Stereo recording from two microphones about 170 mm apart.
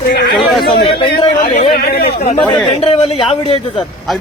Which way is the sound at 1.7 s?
65° left (ahead or behind).